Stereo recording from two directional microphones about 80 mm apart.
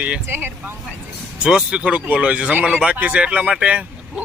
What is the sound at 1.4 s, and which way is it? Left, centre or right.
Speech, centre.